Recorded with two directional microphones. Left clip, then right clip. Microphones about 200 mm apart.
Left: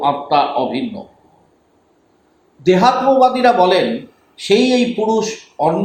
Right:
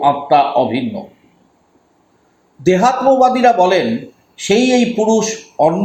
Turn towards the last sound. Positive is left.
turn(degrees=-40)  # may be behind; listen again after turning